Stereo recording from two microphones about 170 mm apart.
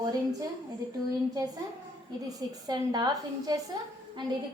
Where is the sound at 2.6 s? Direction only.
25° right (ahead or behind).